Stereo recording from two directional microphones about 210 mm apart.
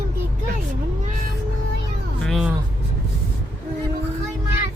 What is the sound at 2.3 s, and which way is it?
Music, centre (ahead or behind).